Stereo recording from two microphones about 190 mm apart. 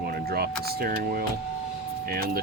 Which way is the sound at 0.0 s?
55° right (ahead or behind).